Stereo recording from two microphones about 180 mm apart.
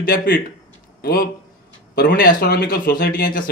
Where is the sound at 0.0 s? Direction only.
55° left (ahead or behind).